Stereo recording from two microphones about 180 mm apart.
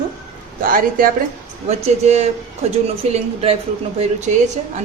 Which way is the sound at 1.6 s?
35° right (ahead or behind).